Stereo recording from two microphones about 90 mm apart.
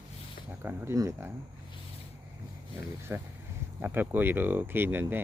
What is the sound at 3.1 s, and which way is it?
Speech, 25° right (ahead or behind).